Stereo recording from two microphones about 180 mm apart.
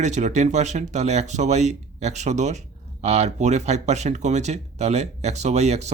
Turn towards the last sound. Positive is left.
turn(degrees=-40)  # may be behind; listen again after turning